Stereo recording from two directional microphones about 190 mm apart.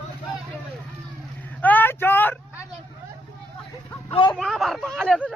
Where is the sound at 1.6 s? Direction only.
10° left (ahead or behind).